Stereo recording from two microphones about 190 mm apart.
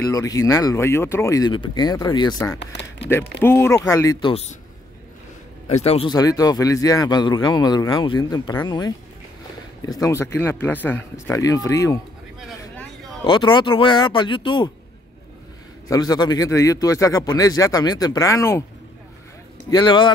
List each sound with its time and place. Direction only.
0.0 s speech: 15° left (ahead or behind)
2.6 s speech: 70° left (ahead or behind)
3.3 s speech: 10° left (ahead or behind); by 4.6 s 30° left (ahead or behind)
5.7 s a man's voice: 35° left (ahead or behind); by 12.0 s 15° left (ahead or behind)
12.4 s vehicle: centre (ahead or behind)
13.2 s a man's voice: 25° left (ahead or behind)
15.9 s a man's voice: 20° left (ahead or behind)
19.7 s a man's voice: 25° left (ahead or behind)